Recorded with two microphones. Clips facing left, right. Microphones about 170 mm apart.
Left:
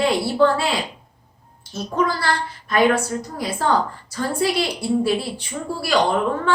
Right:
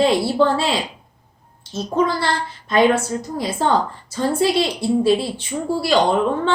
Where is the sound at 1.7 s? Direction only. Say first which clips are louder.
Right 3 dB; 25° right (ahead or behind).